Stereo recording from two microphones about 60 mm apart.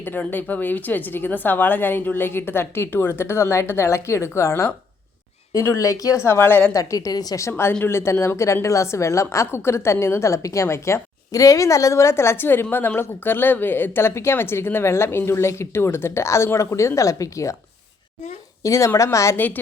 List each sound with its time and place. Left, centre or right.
0.0 s speech: left
5.5 s a woman's voice: left
6.2 s speech: left
6.7 s a woman's voice: left
7.4 s a woman's voice: left
11.3 s a woman's voice: left
18.6 s a woman's voice: left